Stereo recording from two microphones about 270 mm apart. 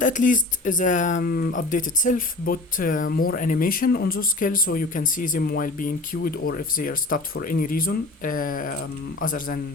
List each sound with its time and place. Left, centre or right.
0.0 s speech: left